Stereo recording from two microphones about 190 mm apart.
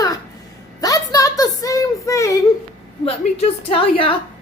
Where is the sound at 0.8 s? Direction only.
20° left (ahead or behind).